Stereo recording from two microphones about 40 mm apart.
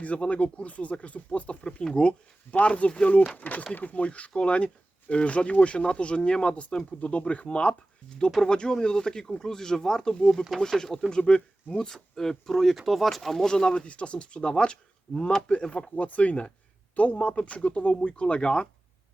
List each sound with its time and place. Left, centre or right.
0.0 s speech: left
3.1 s speech: left; by 11.0 s centre
11.2 s speech: left
12.1 s speech: centre
13.5 s speech: centre
13.8 s speech: left